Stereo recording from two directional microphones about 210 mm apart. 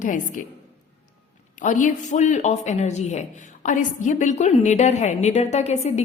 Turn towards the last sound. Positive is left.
turn(degrees=30)  # may be behind; listen again after turning